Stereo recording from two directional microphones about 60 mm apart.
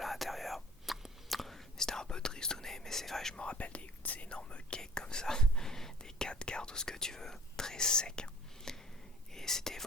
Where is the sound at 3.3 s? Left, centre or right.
Centre.